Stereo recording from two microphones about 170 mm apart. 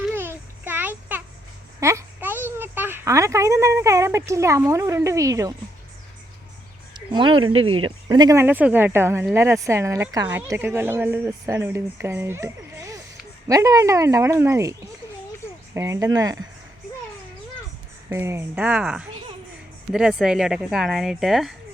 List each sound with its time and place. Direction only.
0.1 s a sound: 10° right (ahead or behind)
1.8 s a woman's voice: 15° right (ahead or behind)
6.9 s a woman's voice: 30° right (ahead or behind)
18.1 s a woman's voice: 15° right (ahead or behind)